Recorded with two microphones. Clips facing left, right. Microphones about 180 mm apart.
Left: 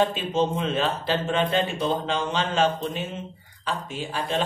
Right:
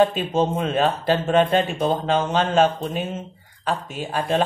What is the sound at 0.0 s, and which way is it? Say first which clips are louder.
A man's voice: right 4 dB; 50° right (ahead or behind).